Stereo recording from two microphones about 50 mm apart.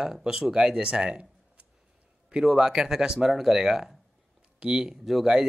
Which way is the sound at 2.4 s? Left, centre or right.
Centre.